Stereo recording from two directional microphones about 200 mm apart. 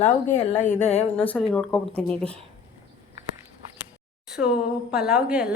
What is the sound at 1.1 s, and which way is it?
A woman's voice, 5° left (ahead or behind).